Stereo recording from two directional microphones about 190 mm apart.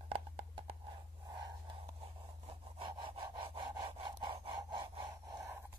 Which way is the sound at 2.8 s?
25° right (ahead or behind).